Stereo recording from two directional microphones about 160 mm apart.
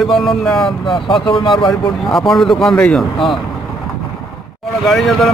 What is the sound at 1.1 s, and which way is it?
Speech, 30° left (ahead or behind).